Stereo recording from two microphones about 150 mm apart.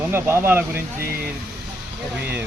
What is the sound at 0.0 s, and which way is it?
Speech, 15° right (ahead or behind).